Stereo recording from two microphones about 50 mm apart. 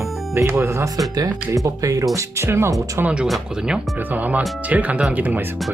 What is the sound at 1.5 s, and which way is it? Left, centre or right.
Speech, right.